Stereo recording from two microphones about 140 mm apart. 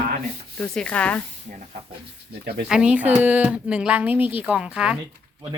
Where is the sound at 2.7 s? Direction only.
5° right (ahead or behind).